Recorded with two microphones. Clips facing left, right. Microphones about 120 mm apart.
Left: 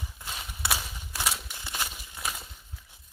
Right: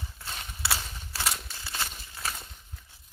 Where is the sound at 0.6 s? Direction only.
15° left (ahead or behind).